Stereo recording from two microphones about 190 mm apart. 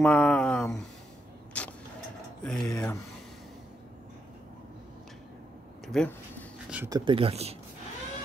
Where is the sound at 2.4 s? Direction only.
Centre (ahead or behind).